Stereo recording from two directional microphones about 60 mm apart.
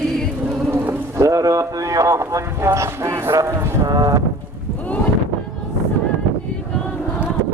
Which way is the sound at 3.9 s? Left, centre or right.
Right.